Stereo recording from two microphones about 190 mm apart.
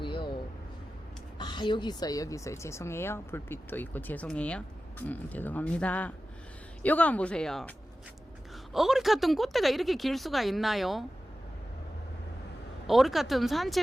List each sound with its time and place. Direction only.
0.0 s vehicle: 25° left (ahead or behind)
1.4 s speech: 25° left (ahead or behind); by 7.7 s 5° left (ahead or behind)
8.7 s speech: centre (ahead or behind)
12.9 s speech: centre (ahead or behind)